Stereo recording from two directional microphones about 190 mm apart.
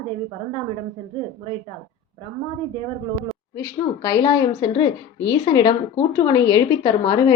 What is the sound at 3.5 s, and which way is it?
A woman's voice, 15° left (ahead or behind).